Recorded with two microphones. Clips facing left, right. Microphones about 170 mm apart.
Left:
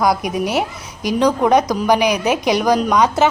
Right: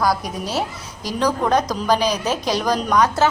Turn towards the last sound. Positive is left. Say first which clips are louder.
# left 3 dB
turn(degrees=15)  # may be behind; listen again after turning